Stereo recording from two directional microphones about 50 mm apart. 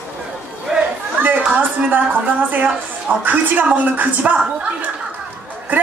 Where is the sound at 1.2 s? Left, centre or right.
Right.